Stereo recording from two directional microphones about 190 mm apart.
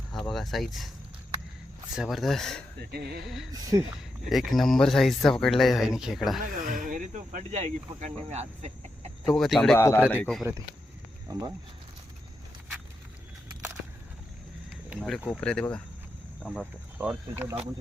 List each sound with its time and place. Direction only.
0.1 s speech: centre (ahead or behind)
2.0 s speech: centre (ahead or behind)
2.9 s speech: 55° right (ahead or behind)
3.5 s speech: 20° right (ahead or behind)
4.3 s speech: centre (ahead or behind)
6.4 s speech: 45° right (ahead or behind)
9.3 s speech: centre (ahead or behind)
11.3 s speech: 20° right (ahead or behind)
14.7 s speech: 5° right (ahead or behind)
17.0 s speech: 10° right (ahead or behind)